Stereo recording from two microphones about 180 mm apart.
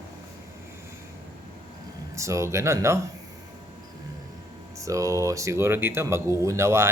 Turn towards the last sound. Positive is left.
turn(degrees=-15)  # may be behind; listen again after turning